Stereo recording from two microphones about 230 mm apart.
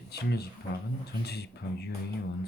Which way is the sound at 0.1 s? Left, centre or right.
Left.